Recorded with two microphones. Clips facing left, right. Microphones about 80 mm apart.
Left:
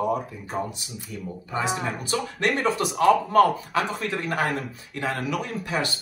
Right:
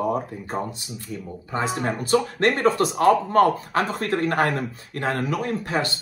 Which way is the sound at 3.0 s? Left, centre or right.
Right.